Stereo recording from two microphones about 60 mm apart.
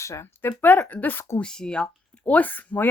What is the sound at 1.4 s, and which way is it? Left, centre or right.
Speech, centre.